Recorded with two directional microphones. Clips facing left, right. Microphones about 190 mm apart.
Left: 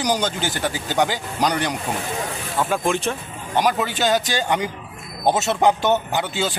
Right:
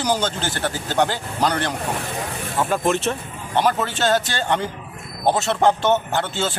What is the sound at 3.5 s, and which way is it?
A man's voice, 10° left (ahead or behind).